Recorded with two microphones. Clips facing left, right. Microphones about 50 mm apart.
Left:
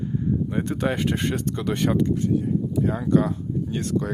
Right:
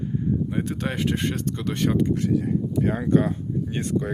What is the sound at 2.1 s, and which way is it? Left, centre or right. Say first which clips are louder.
Speech: even; right.